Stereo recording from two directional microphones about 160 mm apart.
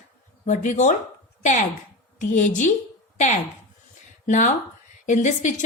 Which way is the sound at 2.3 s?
50° left (ahead or behind).